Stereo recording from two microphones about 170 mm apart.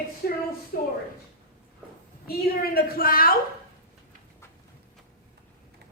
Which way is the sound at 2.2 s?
60° left (ahead or behind).